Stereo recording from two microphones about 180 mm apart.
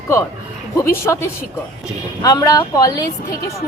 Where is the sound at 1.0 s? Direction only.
15° left (ahead or behind).